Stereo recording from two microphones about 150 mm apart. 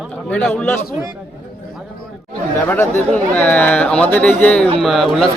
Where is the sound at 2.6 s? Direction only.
15° left (ahead or behind).